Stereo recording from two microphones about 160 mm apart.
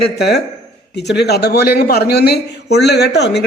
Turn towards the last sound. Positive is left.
turn(degrees=90)